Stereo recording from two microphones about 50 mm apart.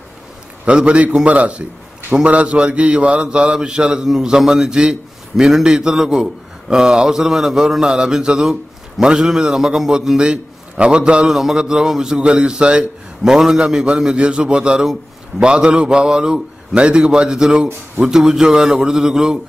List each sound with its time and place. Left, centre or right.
0.7 s a man's voice: right
2.2 s mantra: right
11.2 s mantra: centre
13.3 s a man's voice: centre
15.3 s mantra: centre